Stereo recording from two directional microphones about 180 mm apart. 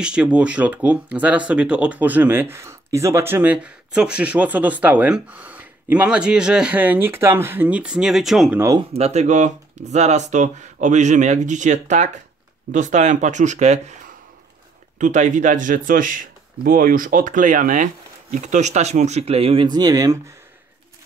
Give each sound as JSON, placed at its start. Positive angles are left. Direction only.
{"t": 0.0, "sound": "speech", "side_deg": -5}
{"t": 8.5, "sound": "speech", "side_deg": -20}
{"t": 8.9, "sound": "speech", "side_deg": -35}